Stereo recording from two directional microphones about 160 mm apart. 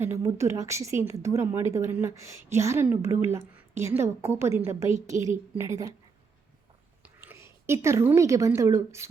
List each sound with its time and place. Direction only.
0.0 s a woman's voice: 15° right (ahead or behind)
7.0 s a woman's voice: 15° right (ahead or behind)